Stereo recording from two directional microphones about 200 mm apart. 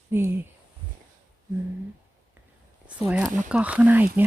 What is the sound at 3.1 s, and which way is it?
Speech, 5° right (ahead or behind).